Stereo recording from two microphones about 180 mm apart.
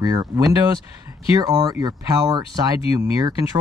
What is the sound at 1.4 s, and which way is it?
Speech, 20° right (ahead or behind).